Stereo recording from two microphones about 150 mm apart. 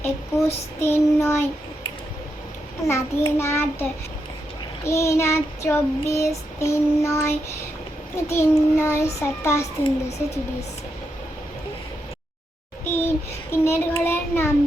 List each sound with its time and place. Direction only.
0.0 s a child's voice: 15° left (ahead or behind)
2.8 s a child's voice: 20° left (ahead or behind)
4.9 s child singing: 20° left (ahead or behind)
8.1 s a child's voice: 15° left (ahead or behind)
12.8 s child singing: 15° left (ahead or behind)
14.0 s a child's voice: 15° left (ahead or behind)